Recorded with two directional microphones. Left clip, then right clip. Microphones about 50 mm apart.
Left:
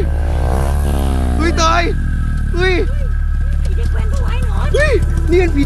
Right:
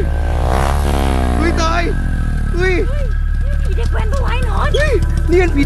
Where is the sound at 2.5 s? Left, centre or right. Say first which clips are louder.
Left 1 dB; left.